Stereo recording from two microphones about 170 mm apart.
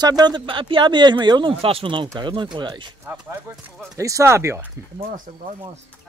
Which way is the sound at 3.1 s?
15° right (ahead or behind).